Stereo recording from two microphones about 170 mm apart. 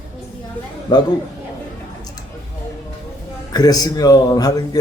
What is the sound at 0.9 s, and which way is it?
Speech, 30° left (ahead or behind).